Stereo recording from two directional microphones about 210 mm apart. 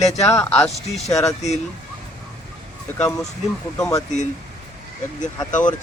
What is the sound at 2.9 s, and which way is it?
Speech, 5° left (ahead or behind).